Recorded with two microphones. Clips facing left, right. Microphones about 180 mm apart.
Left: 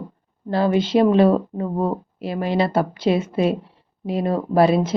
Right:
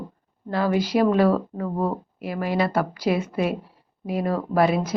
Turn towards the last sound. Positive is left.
turn(degrees=30)  # may be behind; listen again after turning